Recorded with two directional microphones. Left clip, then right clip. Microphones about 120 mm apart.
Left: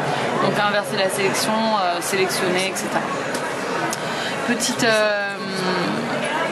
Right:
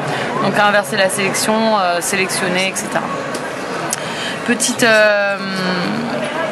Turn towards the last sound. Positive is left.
turn(degrees=-25)  # may be behind; listen again after turning